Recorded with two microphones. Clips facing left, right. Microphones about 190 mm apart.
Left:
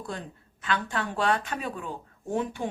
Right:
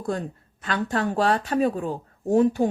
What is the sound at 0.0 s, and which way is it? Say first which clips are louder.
Speech: right 9 dB; 45° right (ahead or behind).